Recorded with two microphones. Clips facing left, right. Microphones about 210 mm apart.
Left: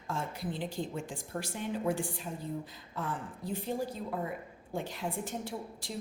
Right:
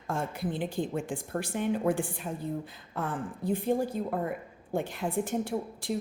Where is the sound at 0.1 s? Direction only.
55° right (ahead or behind).